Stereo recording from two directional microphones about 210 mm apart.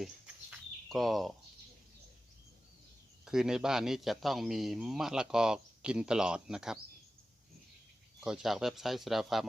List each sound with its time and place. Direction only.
0.5 s a sound: centre (ahead or behind)
3.2 s speech: 5° right (ahead or behind)
8.2 s speech: centre (ahead or behind)